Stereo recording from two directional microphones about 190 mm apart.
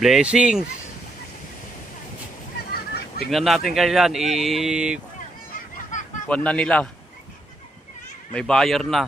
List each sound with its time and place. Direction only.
0.0 s speech: 5° right (ahead or behind)
2.6 s goose: 55° left (ahead or behind)
3.2 s speech: centre (ahead or behind)
5.9 s a sound: 40° left (ahead or behind)
6.2 s speech: 5° left (ahead or behind)
8.3 s speech: 5° left (ahead or behind)